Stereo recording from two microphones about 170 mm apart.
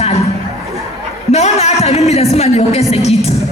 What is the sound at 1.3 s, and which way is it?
A woman's voice, 40° left (ahead or behind).